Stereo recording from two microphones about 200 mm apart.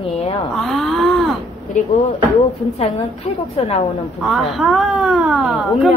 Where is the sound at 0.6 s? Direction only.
5° left (ahead or behind).